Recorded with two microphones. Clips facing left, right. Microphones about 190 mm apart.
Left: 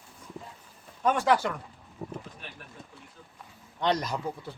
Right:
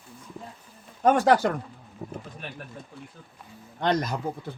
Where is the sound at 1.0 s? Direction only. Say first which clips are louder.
Right 5 dB; 45° right (ahead or behind).